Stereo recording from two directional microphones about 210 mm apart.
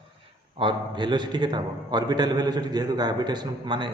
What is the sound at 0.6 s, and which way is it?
A man's voice, 20° right (ahead or behind).